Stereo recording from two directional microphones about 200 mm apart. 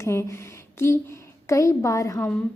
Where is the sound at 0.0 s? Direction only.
15° left (ahead or behind).